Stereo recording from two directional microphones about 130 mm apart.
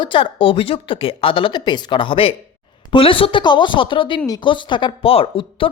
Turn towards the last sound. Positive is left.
turn(degrees=45)  # may be behind; listen again after turning